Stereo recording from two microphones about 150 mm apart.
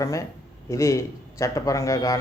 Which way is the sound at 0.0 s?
20° left (ahead or behind).